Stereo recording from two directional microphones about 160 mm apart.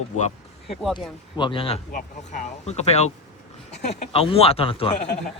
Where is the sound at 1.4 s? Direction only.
30° left (ahead or behind).